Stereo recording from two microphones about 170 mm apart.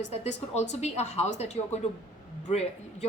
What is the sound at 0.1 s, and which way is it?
A woman's voice, 40° left (ahead or behind).